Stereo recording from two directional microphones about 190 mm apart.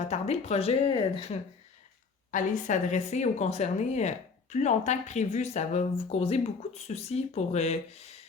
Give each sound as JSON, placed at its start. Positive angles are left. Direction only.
{"t": 0.0, "sound": "speech", "side_deg": 35}
{"t": 2.3, "sound": "speech", "side_deg": 40}